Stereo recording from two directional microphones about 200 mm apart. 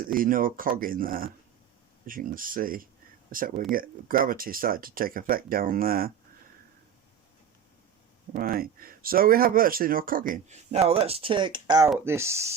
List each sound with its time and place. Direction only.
0.2 s speech: 45° right (ahead or behind)
8.4 s speech: 45° right (ahead or behind); by 12.5 s 15° right (ahead or behind)